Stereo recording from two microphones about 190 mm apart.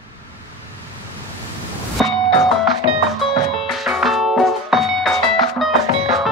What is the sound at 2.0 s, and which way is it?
Music, 5° left (ahead or behind).